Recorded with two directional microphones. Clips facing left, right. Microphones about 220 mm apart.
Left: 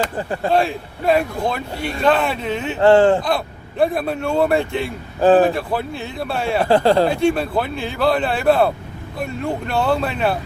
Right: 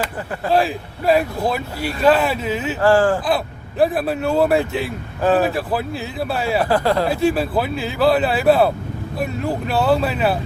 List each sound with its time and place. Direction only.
0.5 s speech: centre (ahead or behind)
2.8 s speech: 25° left (ahead or behind)
3.2 s speech: 5° right (ahead or behind)
6.7 s speech: 30° left (ahead or behind)
7.1 s speech: 5° right (ahead or behind)